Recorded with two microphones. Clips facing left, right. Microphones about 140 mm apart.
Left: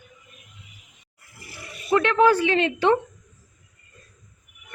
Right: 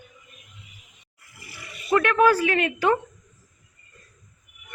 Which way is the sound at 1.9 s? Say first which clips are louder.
Left 1 dB; 25° left (ahead or behind).